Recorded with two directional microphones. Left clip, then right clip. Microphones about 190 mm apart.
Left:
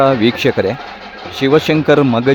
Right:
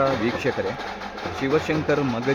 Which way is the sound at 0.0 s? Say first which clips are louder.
Left 10 dB; 45° left (ahead or behind).